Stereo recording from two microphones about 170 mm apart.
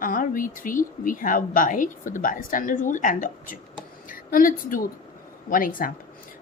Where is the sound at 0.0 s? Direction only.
55° left (ahead or behind).